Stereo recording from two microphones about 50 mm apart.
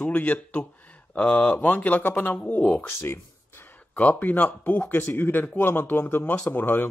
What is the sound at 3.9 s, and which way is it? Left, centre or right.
Speech, left.